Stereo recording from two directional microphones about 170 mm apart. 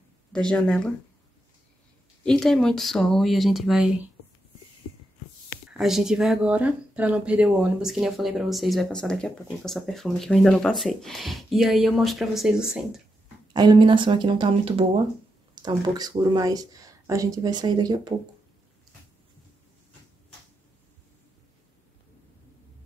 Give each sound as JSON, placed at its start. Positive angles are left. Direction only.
{"t": 0.3, "sound": "speech", "side_deg": 5}
{"t": 2.2, "sound": "speech", "side_deg": 5}
{"t": 5.7, "sound": "speech", "side_deg": 0}
{"t": 13.5, "sound": "speech", "side_deg": -25}